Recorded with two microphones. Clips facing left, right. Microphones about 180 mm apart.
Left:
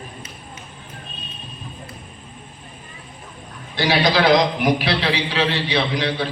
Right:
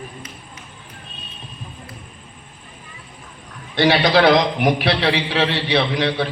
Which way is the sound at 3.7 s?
60° right (ahead or behind).